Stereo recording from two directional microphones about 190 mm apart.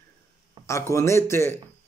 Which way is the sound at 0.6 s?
25° right (ahead or behind).